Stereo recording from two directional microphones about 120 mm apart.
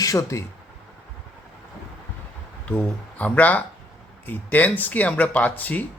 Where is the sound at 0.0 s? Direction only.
25° left (ahead or behind).